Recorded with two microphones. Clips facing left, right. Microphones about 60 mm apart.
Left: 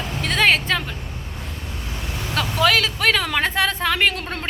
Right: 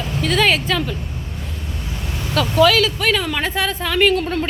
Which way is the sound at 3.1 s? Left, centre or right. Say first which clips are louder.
Even; left.